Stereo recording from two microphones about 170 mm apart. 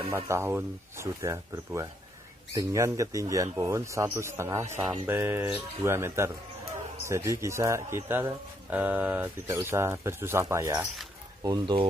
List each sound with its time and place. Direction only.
0.1 s a man's voice: 15° right (ahead or behind)